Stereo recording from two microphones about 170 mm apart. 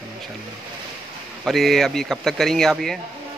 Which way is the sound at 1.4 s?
Centre (ahead or behind).